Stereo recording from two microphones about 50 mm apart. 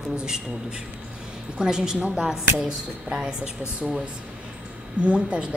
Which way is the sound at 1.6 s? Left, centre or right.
Centre.